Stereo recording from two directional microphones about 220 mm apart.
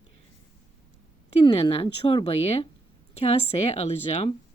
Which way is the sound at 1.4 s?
25° left (ahead or behind).